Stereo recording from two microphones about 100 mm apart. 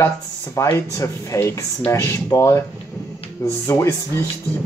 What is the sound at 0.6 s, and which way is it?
Speech, 30° left (ahead or behind).